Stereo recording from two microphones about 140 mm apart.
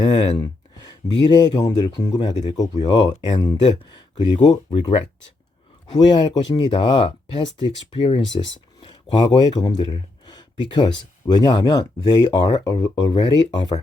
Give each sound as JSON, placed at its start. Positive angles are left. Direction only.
{"t": 0.0, "sound": "speech", "side_deg": 35}